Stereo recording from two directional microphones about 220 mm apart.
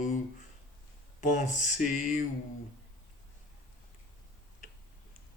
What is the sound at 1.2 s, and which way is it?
Speech, 35° left (ahead or behind).